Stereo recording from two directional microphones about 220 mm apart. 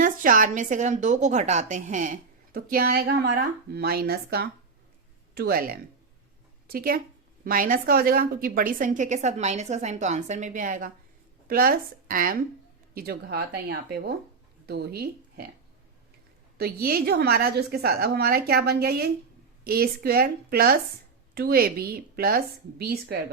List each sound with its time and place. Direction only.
0.0 s a woman's voice: 35° right (ahead or behind)
16.6 s a woman's voice: 45° right (ahead or behind)